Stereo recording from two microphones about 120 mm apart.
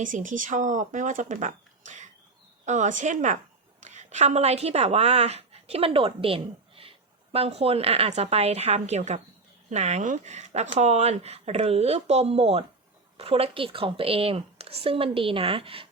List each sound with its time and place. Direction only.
0.0 s speech: 90° right
3.8 s a woman's voice: 75° right (ahead or behind); by 15.9 s 50° right (ahead or behind)